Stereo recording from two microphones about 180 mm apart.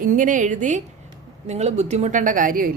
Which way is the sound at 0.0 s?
45° right (ahead or behind).